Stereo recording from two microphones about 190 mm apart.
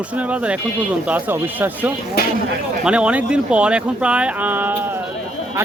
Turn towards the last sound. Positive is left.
turn(degrees=-10)  # may be behind; listen again after turning